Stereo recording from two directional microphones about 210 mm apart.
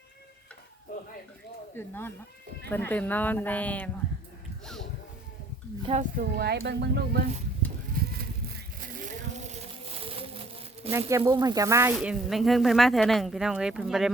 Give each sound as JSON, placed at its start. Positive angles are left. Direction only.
{"t": 1.7, "sound": "speech", "side_deg": 10}
{"t": 5.8, "sound": "speech", "side_deg": -30}
{"t": 6.1, "sound": "speech", "side_deg": -50}
{"t": 7.9, "sound": "a sound", "side_deg": -45}
{"t": 10.8, "sound": "speech", "side_deg": -30}
{"t": 11.9, "sound": "speech", "side_deg": 0}